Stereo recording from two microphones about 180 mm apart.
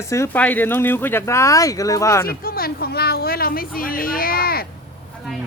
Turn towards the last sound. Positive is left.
turn(degrees=55)  # may be behind; listen again after turning